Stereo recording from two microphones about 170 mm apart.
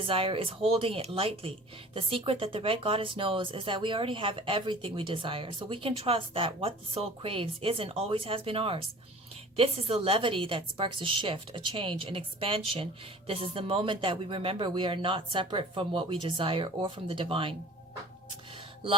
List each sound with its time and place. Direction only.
0.0 s speech: 30° right (ahead or behind)